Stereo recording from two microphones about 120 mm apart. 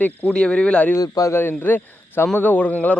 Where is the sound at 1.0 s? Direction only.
25° left (ahead or behind).